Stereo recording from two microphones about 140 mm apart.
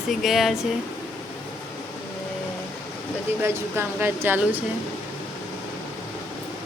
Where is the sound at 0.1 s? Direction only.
Centre (ahead or behind).